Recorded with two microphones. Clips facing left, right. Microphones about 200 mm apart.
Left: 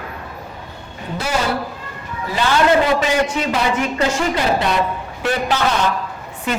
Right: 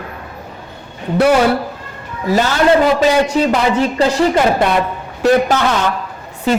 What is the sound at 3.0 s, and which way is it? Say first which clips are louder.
Speech: right 6 dB; 35° right (ahead or behind).